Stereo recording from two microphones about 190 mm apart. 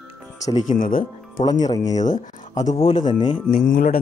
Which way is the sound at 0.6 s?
45° left (ahead or behind).